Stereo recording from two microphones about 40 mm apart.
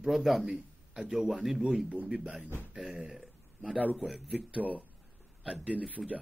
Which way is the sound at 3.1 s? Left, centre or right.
Centre.